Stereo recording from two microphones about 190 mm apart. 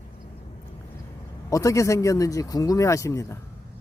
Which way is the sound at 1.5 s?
15° left (ahead or behind).